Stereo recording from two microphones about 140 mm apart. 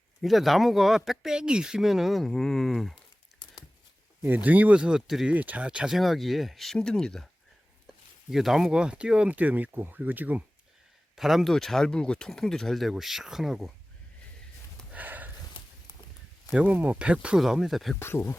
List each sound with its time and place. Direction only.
0.2 s speech: centre (ahead or behind)
4.2 s speech: 15° right (ahead or behind)
14.9 s a sound: 10° right (ahead or behind)
16.5 s speech: 10° right (ahead or behind)
18.0 s speech: 15° left (ahead or behind)